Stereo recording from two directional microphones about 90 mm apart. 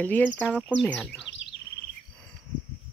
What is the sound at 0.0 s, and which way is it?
Speech, 20° left (ahead or behind).